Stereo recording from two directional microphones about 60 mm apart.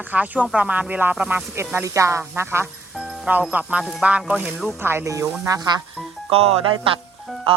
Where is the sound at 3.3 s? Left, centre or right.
Right.